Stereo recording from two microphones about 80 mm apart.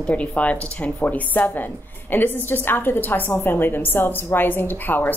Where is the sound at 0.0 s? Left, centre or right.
Centre.